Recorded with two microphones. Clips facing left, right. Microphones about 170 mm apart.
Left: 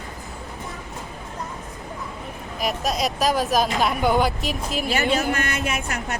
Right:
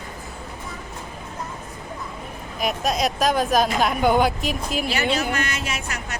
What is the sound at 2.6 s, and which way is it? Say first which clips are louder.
A woman's voice: right 1 dB; centre (ahead or behind).